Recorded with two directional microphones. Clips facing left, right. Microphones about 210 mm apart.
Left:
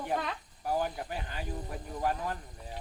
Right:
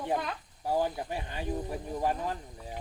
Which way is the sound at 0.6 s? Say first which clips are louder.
Right 2 dB; 25° right (ahead or behind).